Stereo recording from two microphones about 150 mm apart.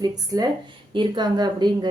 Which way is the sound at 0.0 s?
25° right (ahead or behind).